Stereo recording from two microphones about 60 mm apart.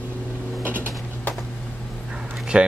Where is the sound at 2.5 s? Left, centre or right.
Centre.